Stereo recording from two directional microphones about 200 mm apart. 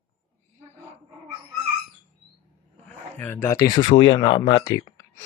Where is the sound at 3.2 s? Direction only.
10° left (ahead or behind); by 5.1 s 25° left (ahead or behind).